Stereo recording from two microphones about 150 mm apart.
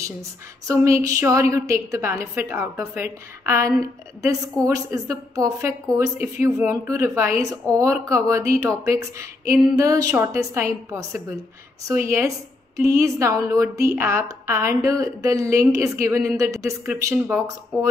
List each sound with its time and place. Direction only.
0.0 s a woman's voice: 20° right (ahead or behind)